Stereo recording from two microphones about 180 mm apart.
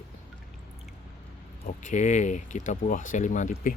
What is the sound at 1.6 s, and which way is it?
Speech, 45° left (ahead or behind).